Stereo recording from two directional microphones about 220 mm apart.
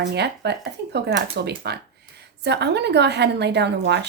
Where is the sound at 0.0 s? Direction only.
50° right (ahead or behind).